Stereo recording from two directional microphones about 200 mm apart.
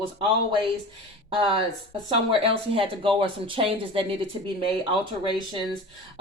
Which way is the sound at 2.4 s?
25° right (ahead or behind).